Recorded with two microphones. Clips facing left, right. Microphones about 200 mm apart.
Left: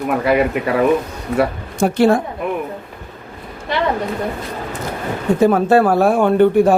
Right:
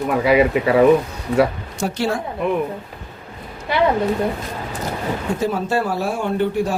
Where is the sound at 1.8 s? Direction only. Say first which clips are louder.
Left 8 dB; 55° left (ahead or behind).